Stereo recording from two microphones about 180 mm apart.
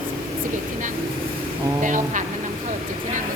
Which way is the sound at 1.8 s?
45° right (ahead or behind).